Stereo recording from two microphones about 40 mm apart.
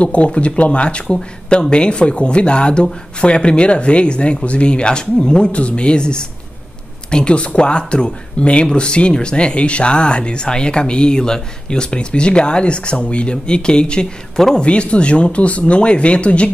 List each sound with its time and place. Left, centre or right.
0.0 s speech: left